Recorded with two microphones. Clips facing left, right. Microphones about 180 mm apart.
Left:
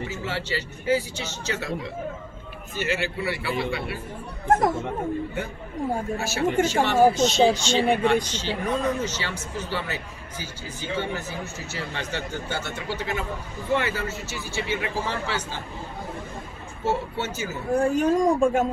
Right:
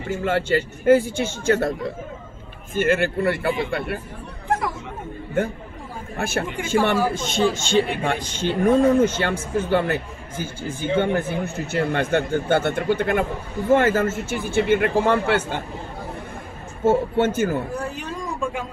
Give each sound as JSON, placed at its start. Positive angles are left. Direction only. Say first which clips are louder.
{"t": 0.0, "sound": "a man's voice", "louder": "right 8 dB", "side_deg": -55}
{"t": 4.5, "sound": "speech", "louder": "left 4 dB", "side_deg": 45}
{"t": 6.1, "sound": "a man's voice", "louder": "even", "side_deg": -55}
{"t": 16.8, "sound": "a man's voice", "louder": "right 8 dB", "side_deg": -55}
{"t": 17.7, "sound": "speech", "louder": "left 9 dB", "side_deg": 45}